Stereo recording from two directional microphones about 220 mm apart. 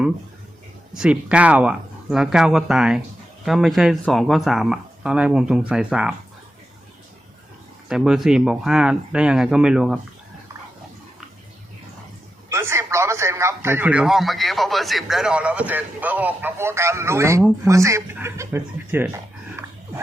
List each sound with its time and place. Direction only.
0.9 s speech: 5° right (ahead or behind)
7.9 s speech: centre (ahead or behind)
12.5 s a man's voice: 10° right (ahead or behind)